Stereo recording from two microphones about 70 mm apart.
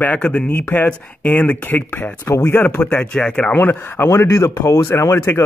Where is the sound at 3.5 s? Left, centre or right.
Left.